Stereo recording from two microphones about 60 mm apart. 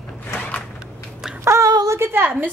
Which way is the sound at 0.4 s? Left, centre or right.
Left.